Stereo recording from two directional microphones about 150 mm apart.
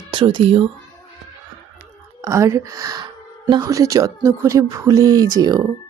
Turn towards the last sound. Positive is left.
turn(degrees=-25)  # may be behind; listen again after turning